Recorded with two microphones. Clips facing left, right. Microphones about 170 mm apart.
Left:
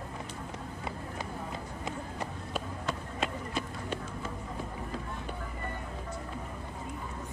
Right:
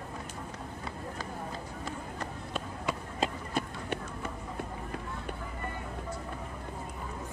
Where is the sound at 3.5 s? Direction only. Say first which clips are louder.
Right 3 dB; 65° right (ahead or behind).